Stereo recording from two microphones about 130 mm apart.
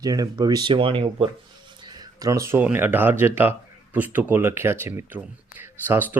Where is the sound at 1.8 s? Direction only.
30° right (ahead or behind).